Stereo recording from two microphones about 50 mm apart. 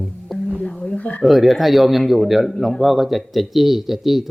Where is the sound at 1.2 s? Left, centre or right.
Centre.